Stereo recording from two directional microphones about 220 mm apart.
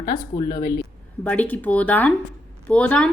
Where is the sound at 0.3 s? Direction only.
20° left (ahead or behind).